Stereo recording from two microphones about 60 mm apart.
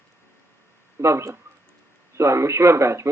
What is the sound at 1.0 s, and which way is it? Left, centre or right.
Speech, right.